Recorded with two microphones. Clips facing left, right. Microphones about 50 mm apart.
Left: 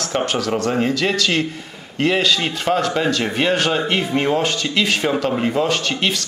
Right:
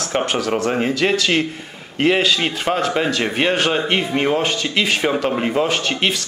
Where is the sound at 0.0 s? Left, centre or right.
Centre.